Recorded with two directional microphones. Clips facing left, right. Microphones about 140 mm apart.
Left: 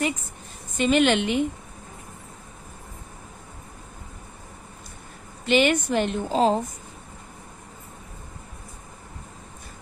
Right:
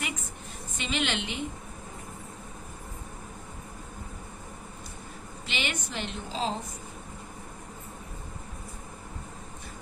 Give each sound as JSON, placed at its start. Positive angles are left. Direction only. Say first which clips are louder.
{"t": 0.8, "sound": "a woman's voice", "louder": "left 12 dB", "side_deg": 50}
{"t": 5.5, "sound": "a woman's voice", "louder": "left 15 dB", "side_deg": 50}